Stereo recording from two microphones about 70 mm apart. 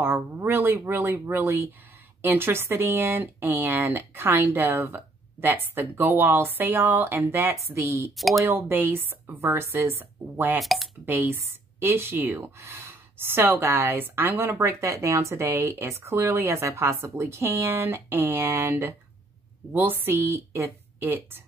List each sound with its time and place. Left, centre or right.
0.0 s speech: right
8.2 s speech: centre
8.5 s speech: right
10.6 s speech: centre
11.1 s speech: right
19.7 s speech: right